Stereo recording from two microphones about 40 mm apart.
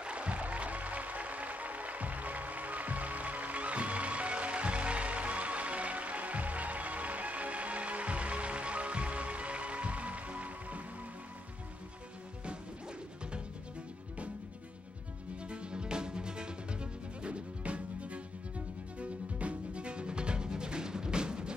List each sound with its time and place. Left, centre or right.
0.0 s music: right
15.4 s music: right